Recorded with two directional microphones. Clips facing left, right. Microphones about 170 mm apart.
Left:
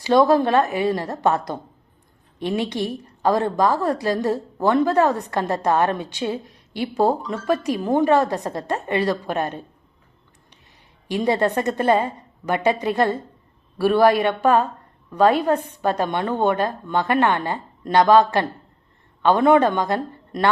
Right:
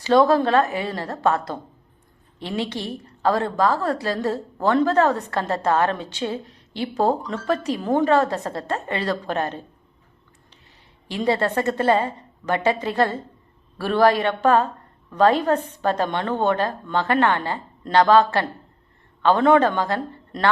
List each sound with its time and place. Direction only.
0.0 s a woman's voice: 15° left (ahead or behind)
11.1 s a woman's voice: 15° left (ahead or behind)